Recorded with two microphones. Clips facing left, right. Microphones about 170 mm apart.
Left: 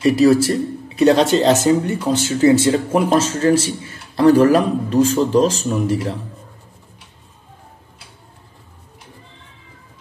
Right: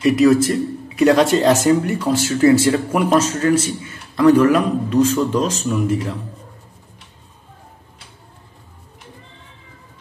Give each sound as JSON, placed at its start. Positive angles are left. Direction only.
{"t": 0.0, "sound": "speech", "side_deg": 30}